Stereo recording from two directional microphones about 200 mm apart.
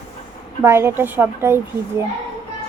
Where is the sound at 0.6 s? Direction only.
15° right (ahead or behind).